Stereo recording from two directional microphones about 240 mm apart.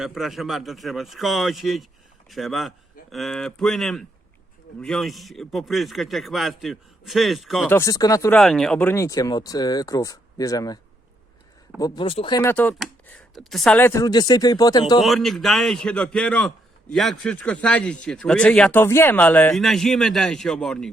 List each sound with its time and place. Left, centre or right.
0.0 s speech: centre
7.8 s speech: centre
8.4 s speech: centre
11.8 s speech: left
12.4 s speech: centre
15.0 s speech: centre